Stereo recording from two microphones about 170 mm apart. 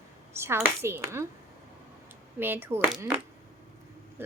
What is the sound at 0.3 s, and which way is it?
Speech, 15° right (ahead or behind).